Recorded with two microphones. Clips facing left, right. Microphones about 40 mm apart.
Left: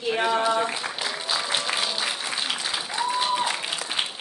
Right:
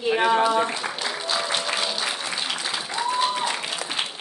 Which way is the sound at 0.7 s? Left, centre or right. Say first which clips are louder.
Right 1 dB; centre.